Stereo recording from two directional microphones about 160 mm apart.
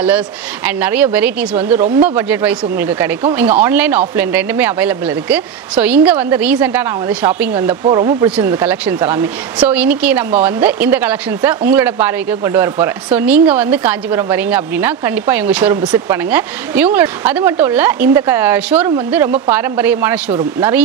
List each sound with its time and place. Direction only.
0.7 s speech: 10° right (ahead or behind)
7.9 s speech: 25° right (ahead or behind)
8.4 s speech: 10° right (ahead or behind)